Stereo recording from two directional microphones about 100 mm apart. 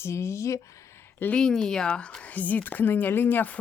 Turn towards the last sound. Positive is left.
turn(degrees=15)  # may be behind; listen again after turning